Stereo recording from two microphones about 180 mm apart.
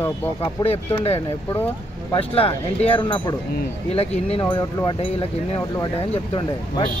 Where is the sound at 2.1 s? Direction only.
30° left (ahead or behind).